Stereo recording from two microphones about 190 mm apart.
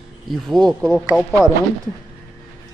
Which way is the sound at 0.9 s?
Centre (ahead or behind).